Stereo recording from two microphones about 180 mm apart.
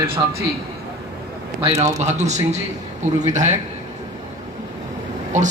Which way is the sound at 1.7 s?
40° right (ahead or behind).